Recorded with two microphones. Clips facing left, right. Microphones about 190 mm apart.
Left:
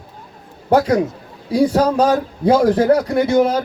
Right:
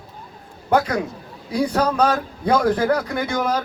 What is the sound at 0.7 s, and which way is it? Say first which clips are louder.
A man's voice: left 5 dB; 30° left (ahead or behind).